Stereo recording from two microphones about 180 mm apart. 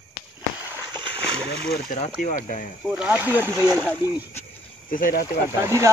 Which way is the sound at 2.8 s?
5° right (ahead or behind).